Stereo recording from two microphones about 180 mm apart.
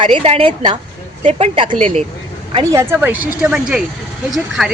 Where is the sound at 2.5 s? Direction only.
20° right (ahead or behind).